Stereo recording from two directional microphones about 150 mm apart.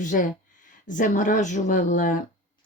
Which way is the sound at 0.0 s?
60° left (ahead or behind).